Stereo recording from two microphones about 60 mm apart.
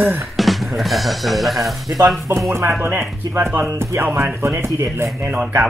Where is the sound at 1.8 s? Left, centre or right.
Right.